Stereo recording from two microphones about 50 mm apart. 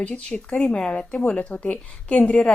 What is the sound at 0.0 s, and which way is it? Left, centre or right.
A woman's voice, left.